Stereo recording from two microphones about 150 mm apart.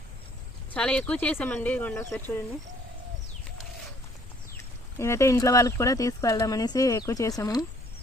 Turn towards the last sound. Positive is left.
turn(degrees=25)  # may be behind; listen again after turning